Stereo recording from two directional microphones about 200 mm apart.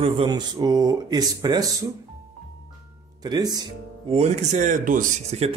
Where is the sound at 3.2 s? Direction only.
20° right (ahead or behind).